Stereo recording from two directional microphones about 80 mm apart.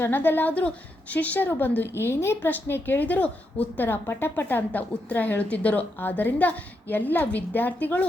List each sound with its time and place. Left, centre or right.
0.0 s a woman's voice: left